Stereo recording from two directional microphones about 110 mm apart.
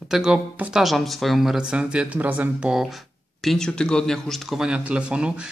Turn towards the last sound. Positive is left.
turn(degrees=-10)  # may be behind; listen again after turning